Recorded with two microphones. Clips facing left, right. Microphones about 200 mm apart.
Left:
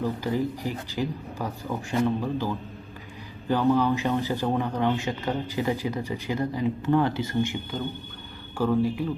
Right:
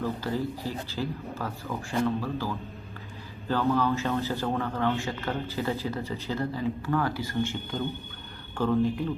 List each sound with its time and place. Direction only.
0.0 s a man's voice: 15° left (ahead or behind)
7.7 s a man's voice: centre (ahead or behind)